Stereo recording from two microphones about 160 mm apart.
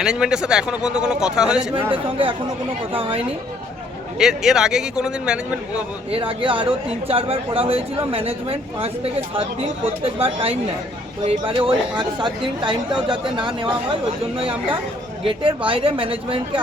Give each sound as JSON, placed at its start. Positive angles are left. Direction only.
{"t": 0.0, "sound": "speech", "side_deg": -5}
{"t": 1.9, "sound": "speech", "side_deg": -35}
{"t": 4.2, "sound": "speech", "side_deg": -5}
{"t": 6.1, "sound": "speech", "side_deg": -35}